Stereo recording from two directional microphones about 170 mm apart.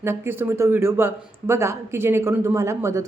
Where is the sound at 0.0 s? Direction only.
15° right (ahead or behind).